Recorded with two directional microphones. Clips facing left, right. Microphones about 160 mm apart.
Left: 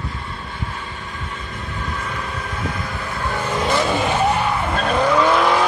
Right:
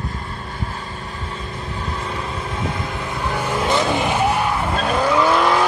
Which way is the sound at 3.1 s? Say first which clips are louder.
Even; 10° right (ahead or behind).